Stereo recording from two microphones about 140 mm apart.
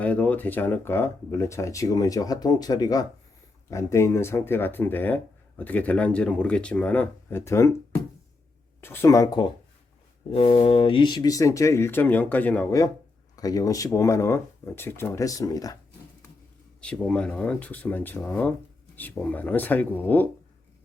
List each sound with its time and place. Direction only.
0.0 s speech: 10° left (ahead or behind)
8.8 s speech: 15° left (ahead or behind)
10.3 s speech: 45° left (ahead or behind); by 12.6 s 10° left (ahead or behind)
13.3 s speech: 25° left (ahead or behind)
16.8 s speech: 5° left (ahead or behind)